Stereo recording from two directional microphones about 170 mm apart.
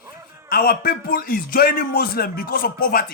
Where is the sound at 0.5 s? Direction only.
60° left (ahead or behind).